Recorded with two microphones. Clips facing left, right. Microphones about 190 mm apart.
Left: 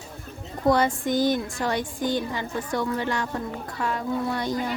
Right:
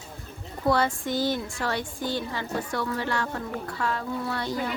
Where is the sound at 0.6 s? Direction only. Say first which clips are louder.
Left 3 dB; 15° left (ahead or behind).